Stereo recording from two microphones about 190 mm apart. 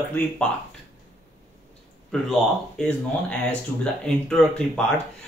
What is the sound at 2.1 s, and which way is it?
Speech, centre (ahead or behind).